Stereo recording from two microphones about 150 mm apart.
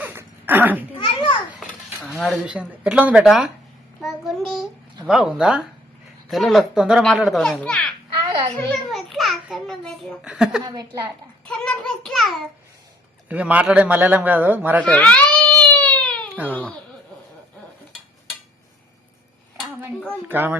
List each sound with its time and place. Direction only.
0.0 s dog: 15° right (ahead or behind)
0.9 s children playing: 35° left (ahead or behind)
1.5 s speech: centre (ahead or behind)
4.0 s child singing: centre (ahead or behind)
5.0 s speech: 5° right (ahead or behind)
8.2 s a sound: 35° right (ahead or behind)
8.7 s a sound: centre (ahead or behind)
10.6 s a woman's voice: 25° right (ahead or behind)
11.4 s speech: 5° left (ahead or behind)
13.2 s a man's voice: 10° right (ahead or behind)
14.8 s baby cry: 10° left (ahead or behind)
16.5 s a child's voice: 10° left (ahead or behind)
20.2 s a man's voice: 15° right (ahead or behind)